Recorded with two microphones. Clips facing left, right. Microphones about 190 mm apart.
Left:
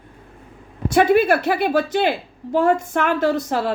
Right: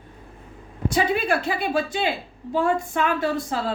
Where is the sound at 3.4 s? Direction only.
70° left (ahead or behind).